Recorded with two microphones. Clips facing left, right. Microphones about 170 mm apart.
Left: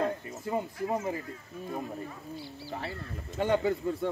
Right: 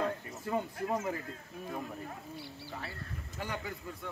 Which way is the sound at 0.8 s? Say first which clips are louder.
Left 4 dB; 20° left (ahead or behind).